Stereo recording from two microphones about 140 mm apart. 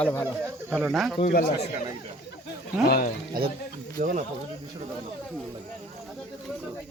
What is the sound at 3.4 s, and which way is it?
Speech, 90° right.